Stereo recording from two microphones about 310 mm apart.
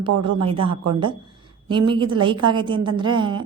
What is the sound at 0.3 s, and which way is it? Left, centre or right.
A woman's voice, centre.